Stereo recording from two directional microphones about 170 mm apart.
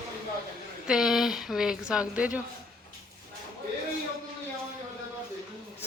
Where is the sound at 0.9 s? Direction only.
Centre (ahead or behind).